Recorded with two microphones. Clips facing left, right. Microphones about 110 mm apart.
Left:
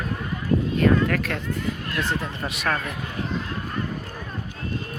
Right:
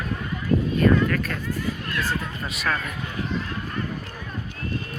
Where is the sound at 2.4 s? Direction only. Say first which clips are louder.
Left 1 dB; 60° left (ahead or behind).